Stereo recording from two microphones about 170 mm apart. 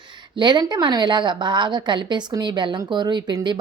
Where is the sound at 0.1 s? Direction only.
25° right (ahead or behind).